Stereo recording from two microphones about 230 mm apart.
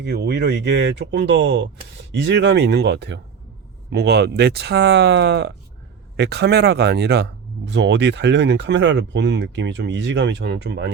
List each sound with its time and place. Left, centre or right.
0.0 s speech: right